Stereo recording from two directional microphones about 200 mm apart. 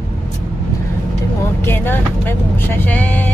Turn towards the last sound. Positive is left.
turn(degrees=10)  # may be behind; listen again after turning